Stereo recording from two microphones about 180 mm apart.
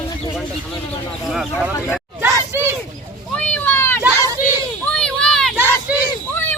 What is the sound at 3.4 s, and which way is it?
Vehicle, 10° left (ahead or behind).